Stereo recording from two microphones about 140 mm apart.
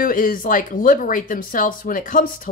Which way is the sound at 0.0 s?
75° left (ahead or behind).